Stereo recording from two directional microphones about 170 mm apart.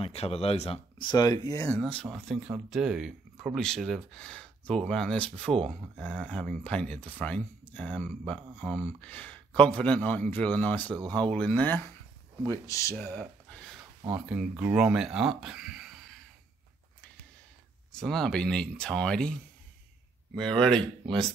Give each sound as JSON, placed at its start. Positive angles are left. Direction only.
{"t": 0.0, "sound": "speech", "side_deg": 35}
{"t": 1.8, "sound": "speech", "side_deg": 5}
{"t": 2.0, "sound": "speech", "side_deg": -5}
{"t": 14.3, "sound": "speech", "side_deg": -5}
{"t": 17.9, "sound": "speech", "side_deg": 0}
{"t": 20.3, "sound": "speech", "side_deg": 5}